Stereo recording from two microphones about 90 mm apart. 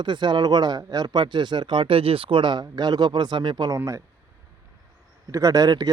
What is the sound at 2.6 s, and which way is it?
Speech, 50° right (ahead or behind).